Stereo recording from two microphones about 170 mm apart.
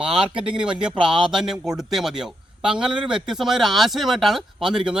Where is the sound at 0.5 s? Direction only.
5° right (ahead or behind).